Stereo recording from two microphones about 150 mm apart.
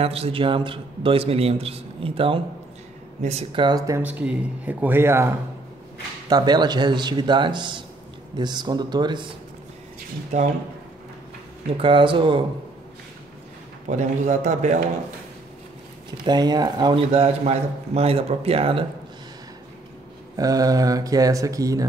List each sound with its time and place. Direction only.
0.0 s a man's voice: 40° right (ahead or behind)
3.6 s a man's voice: 25° right (ahead or behind)
4.0 s speech: 10° right (ahead or behind)
6.2 s a man's voice: 30° right (ahead or behind)
11.7 s a man's voice: 35° right (ahead or behind)
13.8 s a man's voice: 50° right (ahead or behind)
16.3 s a man's voice: 25° right (ahead or behind)
20.3 s a man's voice: 25° right (ahead or behind)